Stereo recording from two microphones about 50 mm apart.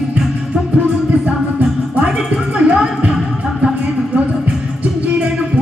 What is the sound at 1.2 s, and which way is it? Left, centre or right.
Music, right.